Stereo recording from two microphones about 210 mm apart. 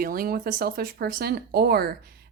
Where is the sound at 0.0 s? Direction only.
45° right (ahead or behind).